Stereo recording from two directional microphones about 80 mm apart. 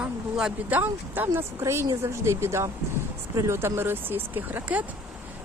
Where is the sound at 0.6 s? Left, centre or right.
Right.